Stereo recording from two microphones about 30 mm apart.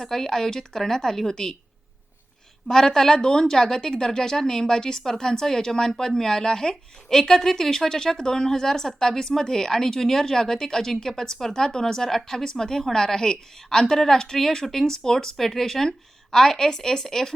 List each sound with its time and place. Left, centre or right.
0.0 s a woman's voice: centre
2.6 s a woman's voice: centre
3.2 s a woman's voice: left